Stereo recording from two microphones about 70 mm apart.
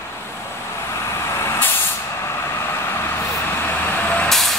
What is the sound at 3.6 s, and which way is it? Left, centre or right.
Vehicle, left.